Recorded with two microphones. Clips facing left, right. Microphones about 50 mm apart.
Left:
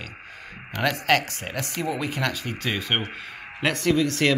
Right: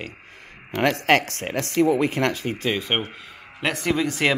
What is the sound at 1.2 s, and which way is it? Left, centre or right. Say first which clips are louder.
Speech: right 4 dB; right.